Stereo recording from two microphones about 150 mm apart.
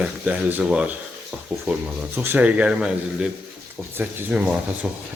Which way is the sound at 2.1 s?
15° right (ahead or behind).